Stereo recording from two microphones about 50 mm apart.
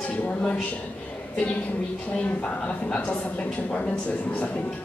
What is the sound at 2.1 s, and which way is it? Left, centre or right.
A woman's voice, left.